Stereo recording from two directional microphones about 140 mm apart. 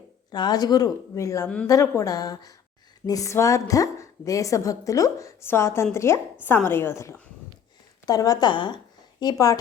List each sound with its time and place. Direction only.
0.3 s a woman's voice: 30° left (ahead or behind)